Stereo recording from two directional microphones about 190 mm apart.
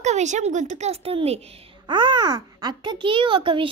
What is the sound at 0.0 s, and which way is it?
A woman's voice, 35° right (ahead or behind).